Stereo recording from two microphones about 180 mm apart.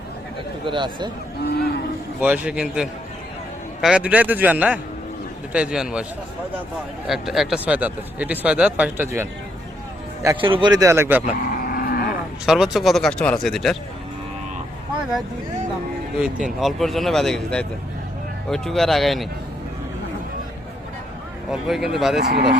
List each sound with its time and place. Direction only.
0.6 s speech: 25° right (ahead or behind)
2.2 s speech: 10° right (ahead or behind)
7.1 s speech: centre (ahead or behind)
10.4 s speech: 25° right (ahead or behind); by 11.3 s 10° right (ahead or behind)
11.4 s cattle: 55° left (ahead or behind)
12.5 s speech: centre (ahead or behind)
16.1 s speech: 5° right (ahead or behind)
21.5 s speech: centre (ahead or behind)
22.2 s speech: 65° right (ahead or behind)